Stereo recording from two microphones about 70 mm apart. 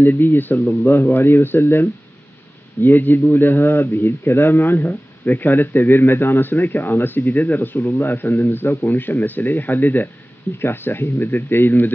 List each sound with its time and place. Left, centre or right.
0.0 s a man's voice: left